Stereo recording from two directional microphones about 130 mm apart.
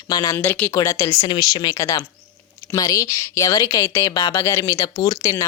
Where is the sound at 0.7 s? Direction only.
25° left (ahead or behind).